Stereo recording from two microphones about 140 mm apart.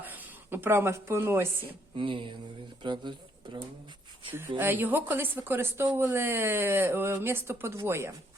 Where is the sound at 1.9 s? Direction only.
35° right (ahead or behind).